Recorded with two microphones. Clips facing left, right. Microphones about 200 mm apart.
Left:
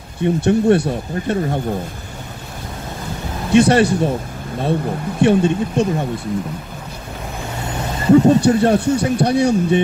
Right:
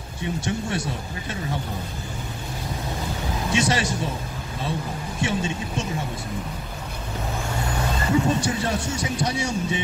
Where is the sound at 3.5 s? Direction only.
60° left (ahead or behind).